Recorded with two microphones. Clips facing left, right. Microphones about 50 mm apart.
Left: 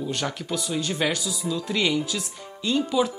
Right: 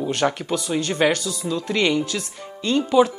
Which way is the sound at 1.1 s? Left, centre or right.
Right.